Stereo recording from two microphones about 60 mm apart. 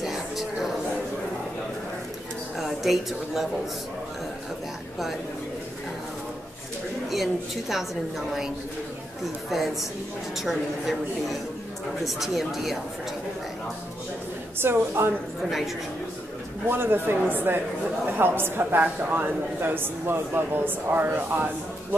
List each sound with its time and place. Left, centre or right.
0.0 s a sound: centre
2.5 s a woman's voice: centre
7.1 s a woman's voice: centre
9.5 s a woman's voice: centre
12.0 s a woman's voice: centre
14.6 s a woman's voice: right
16.6 s a woman's voice: right